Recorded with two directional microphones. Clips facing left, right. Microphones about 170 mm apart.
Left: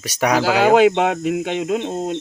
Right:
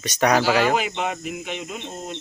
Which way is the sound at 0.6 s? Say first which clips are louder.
Left 9 dB; 90° left.